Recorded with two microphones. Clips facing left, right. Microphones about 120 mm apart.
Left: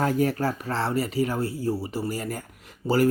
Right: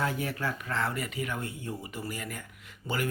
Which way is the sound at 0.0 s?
40° left (ahead or behind).